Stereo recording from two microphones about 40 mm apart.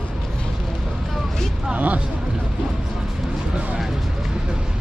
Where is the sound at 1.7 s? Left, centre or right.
Right.